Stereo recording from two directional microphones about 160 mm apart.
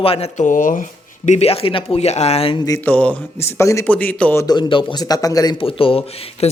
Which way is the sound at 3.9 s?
10° left (ahead or behind).